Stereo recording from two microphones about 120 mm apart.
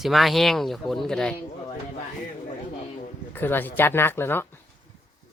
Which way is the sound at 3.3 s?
15° left (ahead or behind).